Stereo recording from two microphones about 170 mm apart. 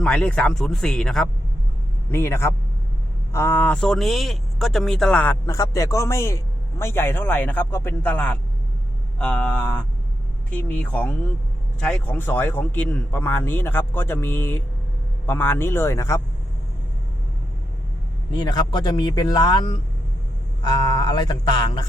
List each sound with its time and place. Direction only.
0.0 s a man's voice: 5° left (ahead or behind)
2.0 s speech: 15° left (ahead or behind)
18.3 s speech: 25° left (ahead or behind)